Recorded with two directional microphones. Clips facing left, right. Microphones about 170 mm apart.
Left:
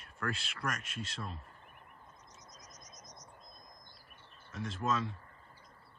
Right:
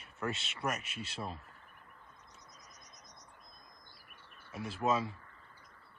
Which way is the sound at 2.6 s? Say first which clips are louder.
Left 3 dB; 40° left (ahead or behind).